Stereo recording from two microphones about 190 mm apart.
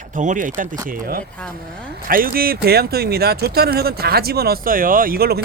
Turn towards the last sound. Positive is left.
turn(degrees=-55)  # may be behind; listen again after turning